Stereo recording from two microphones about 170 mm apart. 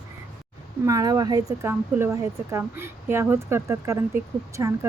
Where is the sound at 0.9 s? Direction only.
20° right (ahead or behind).